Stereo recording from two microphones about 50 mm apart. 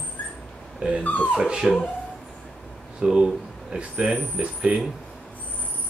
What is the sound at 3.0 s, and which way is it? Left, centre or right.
Speech, centre.